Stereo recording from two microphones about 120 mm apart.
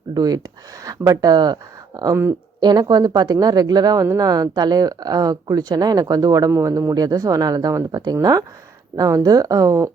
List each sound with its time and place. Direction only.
0.1 s speech: 30° right (ahead or behind)